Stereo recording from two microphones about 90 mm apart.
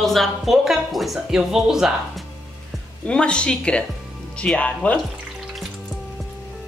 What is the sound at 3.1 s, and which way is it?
Speech, 10° left (ahead or behind).